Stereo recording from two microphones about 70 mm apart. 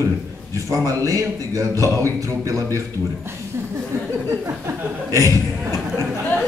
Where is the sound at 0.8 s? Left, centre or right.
Right.